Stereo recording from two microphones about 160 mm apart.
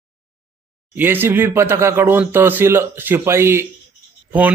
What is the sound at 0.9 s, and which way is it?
A man's voice, 15° right (ahead or behind).